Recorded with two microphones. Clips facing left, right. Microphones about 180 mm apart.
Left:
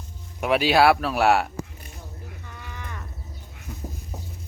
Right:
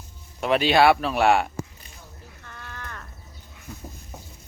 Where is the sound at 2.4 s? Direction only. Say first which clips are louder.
Right 3 dB; 10° left (ahead or behind).